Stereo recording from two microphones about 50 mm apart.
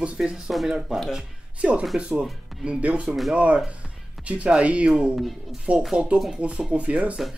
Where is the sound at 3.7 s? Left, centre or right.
Right.